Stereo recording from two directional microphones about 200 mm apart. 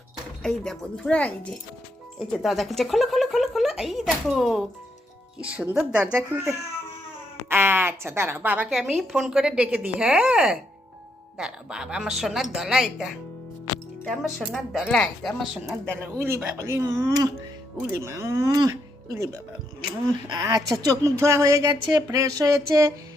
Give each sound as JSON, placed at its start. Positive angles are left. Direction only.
{"t": 0.4, "sound": "a woman's voice", "side_deg": 5}